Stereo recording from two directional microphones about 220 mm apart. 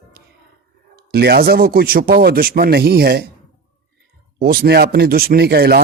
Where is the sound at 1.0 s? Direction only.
45° right (ahead or behind).